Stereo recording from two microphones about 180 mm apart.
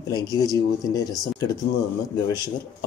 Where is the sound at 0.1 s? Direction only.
20° left (ahead or behind).